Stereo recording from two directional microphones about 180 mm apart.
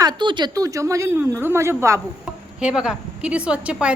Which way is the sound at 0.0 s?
25° right (ahead or behind).